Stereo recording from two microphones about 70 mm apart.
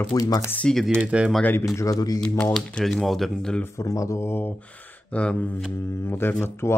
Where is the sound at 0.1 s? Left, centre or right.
Left.